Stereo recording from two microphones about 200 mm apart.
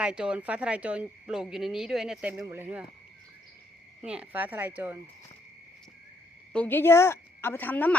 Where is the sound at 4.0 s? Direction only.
5° right (ahead or behind).